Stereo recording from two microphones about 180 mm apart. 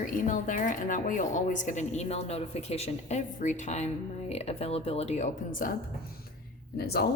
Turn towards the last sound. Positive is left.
turn(degrees=60)  # may be behind; listen again after turning